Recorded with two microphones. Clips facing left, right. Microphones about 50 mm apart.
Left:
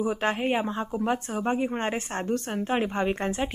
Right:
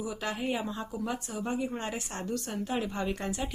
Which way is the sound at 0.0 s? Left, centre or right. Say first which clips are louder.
Left 7 dB; left.